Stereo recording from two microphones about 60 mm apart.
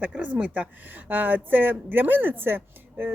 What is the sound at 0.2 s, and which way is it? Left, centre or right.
A woman's voice, right.